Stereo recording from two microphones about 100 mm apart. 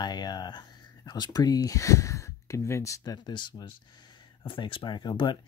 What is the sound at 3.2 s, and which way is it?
Speech, 50° left (ahead or behind).